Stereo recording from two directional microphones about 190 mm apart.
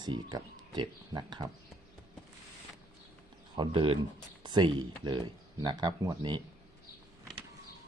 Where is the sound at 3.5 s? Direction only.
25° right (ahead or behind).